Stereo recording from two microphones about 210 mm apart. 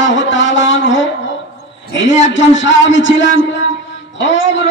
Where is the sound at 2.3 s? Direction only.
60° left (ahead or behind).